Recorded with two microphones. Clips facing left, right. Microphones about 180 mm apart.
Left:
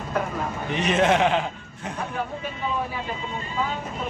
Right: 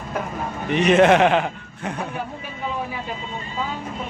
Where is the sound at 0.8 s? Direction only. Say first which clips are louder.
Right 6 dB; 65° right (ahead or behind).